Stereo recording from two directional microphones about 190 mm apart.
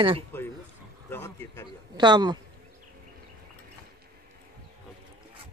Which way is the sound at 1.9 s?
20° right (ahead or behind).